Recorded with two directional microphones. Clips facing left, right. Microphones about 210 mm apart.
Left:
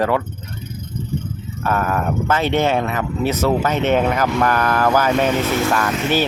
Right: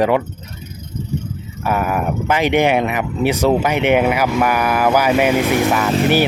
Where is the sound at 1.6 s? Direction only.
10° right (ahead or behind).